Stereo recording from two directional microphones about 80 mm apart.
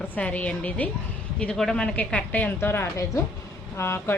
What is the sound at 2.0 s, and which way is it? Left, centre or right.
A woman's voice, left.